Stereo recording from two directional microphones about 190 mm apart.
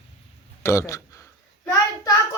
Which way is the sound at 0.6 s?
15° left (ahead or behind).